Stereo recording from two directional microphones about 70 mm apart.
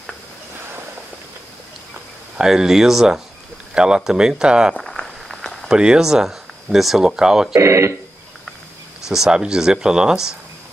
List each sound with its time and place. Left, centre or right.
2.3 s speech: centre
4.7 s a sound: centre
5.7 s speech: centre
7.5 s speech: right
9.0 s speech: centre